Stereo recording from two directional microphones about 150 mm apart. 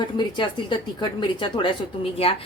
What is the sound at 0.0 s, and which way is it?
A woman's voice, 30° left (ahead or behind).